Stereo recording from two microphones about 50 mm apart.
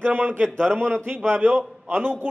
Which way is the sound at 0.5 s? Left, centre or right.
Centre.